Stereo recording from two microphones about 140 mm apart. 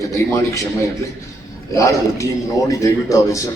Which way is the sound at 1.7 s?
20° left (ahead or behind).